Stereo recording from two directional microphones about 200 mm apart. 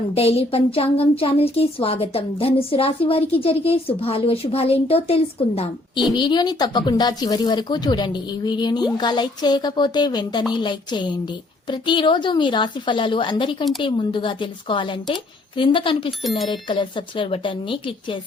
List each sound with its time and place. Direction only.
0.1 s a woman's voice: 30° left (ahead or behind)